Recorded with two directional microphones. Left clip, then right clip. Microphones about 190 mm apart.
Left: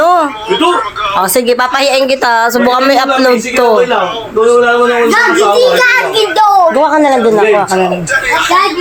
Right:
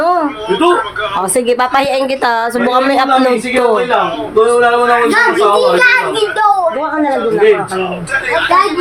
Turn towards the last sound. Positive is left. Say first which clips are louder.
# left 5 dB
turn(degrees=20)  # may be behind; listen again after turning